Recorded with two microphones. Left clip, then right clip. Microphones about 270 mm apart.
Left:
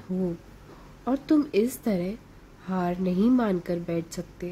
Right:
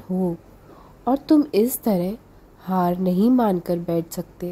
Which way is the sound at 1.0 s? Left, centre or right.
Centre.